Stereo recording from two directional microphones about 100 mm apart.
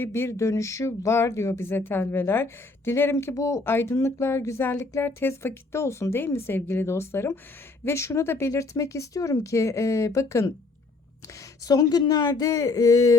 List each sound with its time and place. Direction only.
0.0 s speech: 25° left (ahead or behind)
4.8 s speech: 35° left (ahead or behind)
5.0 s speech: 25° left (ahead or behind)